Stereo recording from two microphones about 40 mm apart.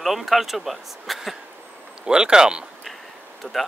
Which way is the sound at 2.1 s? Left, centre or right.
Centre.